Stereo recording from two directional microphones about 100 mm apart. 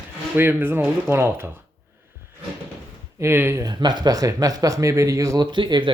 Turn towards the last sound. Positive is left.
turn(degrees=-50)  # may be behind; listen again after turning